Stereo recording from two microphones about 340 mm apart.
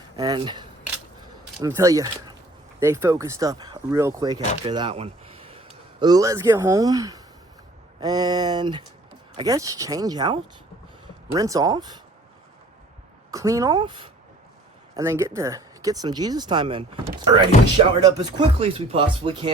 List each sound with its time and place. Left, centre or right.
0.2 s speech: centre
13.3 s speech: centre